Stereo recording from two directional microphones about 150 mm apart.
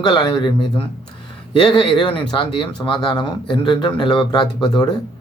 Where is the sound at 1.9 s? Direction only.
35° left (ahead or behind).